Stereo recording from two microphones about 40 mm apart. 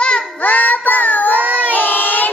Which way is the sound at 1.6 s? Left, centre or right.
Left.